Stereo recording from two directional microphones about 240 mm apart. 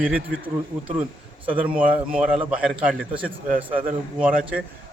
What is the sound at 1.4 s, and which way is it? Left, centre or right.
A man's voice, centre.